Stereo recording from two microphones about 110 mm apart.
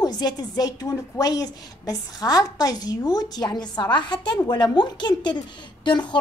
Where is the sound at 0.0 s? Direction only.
40° left (ahead or behind).